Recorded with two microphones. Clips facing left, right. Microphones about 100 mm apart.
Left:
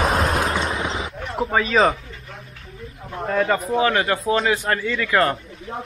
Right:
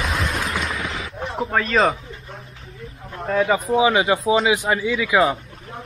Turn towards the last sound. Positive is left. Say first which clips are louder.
# right 1 dB
turn(degrees=-5)  # may be behind; listen again after turning